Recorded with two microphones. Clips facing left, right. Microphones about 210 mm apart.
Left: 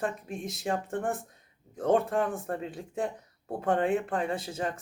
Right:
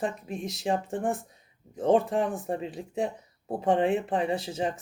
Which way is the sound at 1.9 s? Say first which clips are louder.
Right 2 dB; centre (ahead or behind).